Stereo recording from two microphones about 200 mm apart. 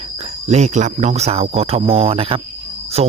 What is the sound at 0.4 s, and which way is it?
Speech, 35° right (ahead or behind).